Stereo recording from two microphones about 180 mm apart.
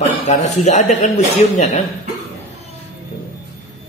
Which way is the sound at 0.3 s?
40° left (ahead or behind).